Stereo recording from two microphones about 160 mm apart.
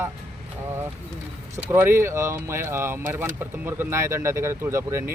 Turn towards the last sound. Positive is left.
turn(degrees=-15)  # may be behind; listen again after turning